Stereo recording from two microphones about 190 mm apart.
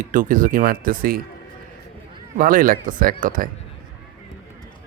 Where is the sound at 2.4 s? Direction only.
45° right (ahead or behind).